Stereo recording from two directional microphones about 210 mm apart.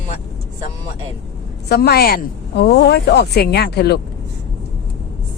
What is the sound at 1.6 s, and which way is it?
Speech, 50° left (ahead or behind).